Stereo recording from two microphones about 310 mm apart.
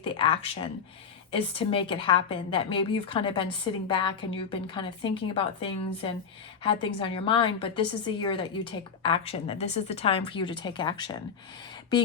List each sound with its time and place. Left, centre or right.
0.0 s a woman's voice: centre